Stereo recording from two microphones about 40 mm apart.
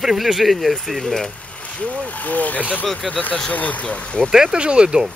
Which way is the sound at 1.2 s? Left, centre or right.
Left.